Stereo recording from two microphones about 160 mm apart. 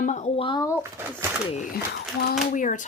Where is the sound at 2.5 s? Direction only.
50° left (ahead or behind).